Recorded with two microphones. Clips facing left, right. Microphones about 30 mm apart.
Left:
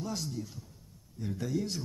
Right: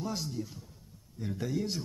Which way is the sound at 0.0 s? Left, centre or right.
Centre.